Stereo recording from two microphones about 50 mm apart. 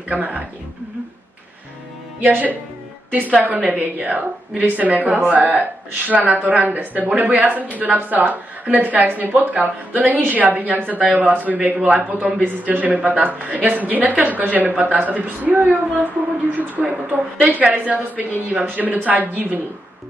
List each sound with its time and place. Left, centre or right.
0.1 s a man's voice: right
2.1 s a man's voice: right